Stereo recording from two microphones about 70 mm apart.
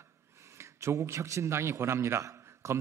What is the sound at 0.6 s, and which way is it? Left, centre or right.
A man's voice, right.